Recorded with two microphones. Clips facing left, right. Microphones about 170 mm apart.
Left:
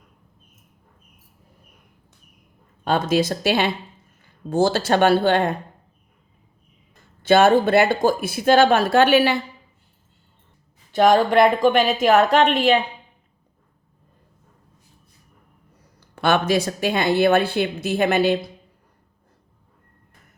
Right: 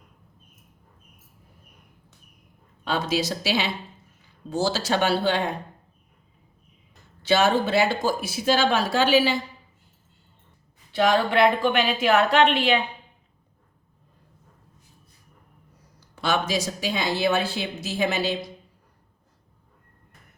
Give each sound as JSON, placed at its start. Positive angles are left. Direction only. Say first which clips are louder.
{"t": 2.8, "sound": "speech", "louder": "left 6 dB", "side_deg": 50}
{"t": 7.2, "sound": "speech", "louder": "left 6 dB", "side_deg": 50}
{"t": 10.9, "sound": "speech", "louder": "left 5 dB", "side_deg": 45}
{"t": 16.0, "sound": "speech", "louder": "left 5 dB", "side_deg": 60}